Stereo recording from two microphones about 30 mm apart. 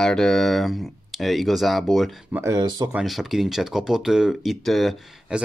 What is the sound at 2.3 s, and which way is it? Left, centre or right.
Speech, right.